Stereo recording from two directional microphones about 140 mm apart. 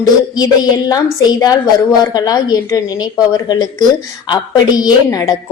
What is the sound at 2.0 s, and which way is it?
A woman's voice, 30° left (ahead or behind).